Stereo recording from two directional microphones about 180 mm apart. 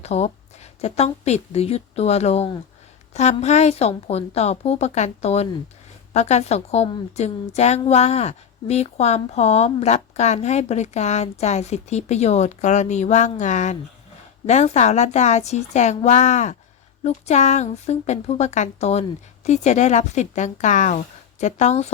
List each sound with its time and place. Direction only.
0.0 s a woman's voice: 35° left (ahead or behind)